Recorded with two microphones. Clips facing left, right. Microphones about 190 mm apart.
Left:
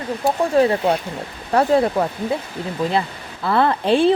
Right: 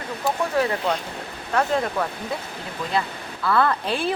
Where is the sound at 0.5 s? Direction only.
30° left (ahead or behind).